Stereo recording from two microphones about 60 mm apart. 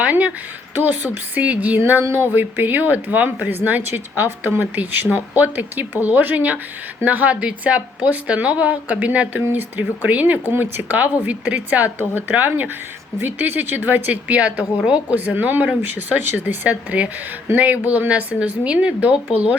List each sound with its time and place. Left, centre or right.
0.0 s a woman's voice: right
11.9 s a woman's voice: right
16.6 s a woman's voice: right